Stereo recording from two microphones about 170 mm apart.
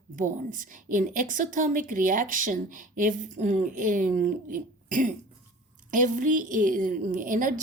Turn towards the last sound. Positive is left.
turn(degrees=-50)  # may be behind; listen again after turning